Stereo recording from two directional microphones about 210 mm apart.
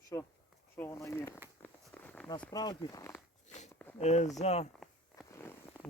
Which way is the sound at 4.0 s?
30° left (ahead or behind).